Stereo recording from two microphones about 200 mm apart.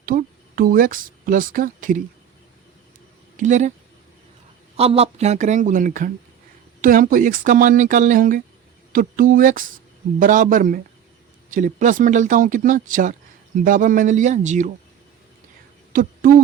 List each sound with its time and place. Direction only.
0.0 s speech: 45° right (ahead or behind)
3.3 s speech: 40° right (ahead or behind)
4.8 s speech: 30° right (ahead or behind)
15.9 s a sound: 45° right (ahead or behind)